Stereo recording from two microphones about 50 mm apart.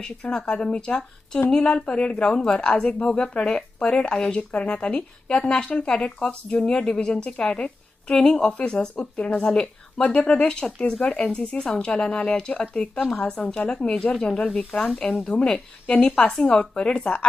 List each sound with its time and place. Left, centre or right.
0.0 s speech: centre
13.2 s speech: centre
15.3 s a woman's voice: left
16.0 s speech: centre